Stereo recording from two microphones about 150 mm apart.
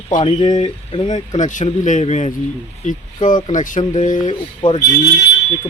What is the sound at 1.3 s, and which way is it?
Speech, 55° left (ahead or behind).